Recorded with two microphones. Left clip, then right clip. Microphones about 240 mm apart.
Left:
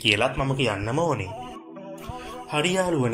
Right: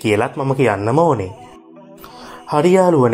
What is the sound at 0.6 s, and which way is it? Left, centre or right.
Speech, right.